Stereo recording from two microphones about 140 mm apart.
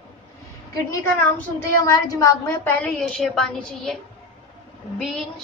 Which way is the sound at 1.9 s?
25° left (ahead or behind).